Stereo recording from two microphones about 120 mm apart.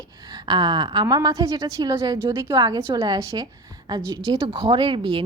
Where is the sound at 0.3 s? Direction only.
35° right (ahead or behind).